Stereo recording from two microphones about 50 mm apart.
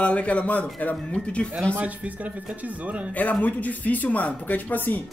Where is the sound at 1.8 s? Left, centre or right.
Right.